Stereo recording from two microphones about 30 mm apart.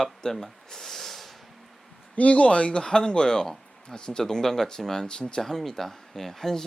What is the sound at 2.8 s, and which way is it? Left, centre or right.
Speech, left.